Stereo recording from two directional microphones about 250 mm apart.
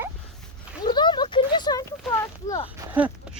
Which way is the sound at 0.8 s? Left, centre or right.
Centre.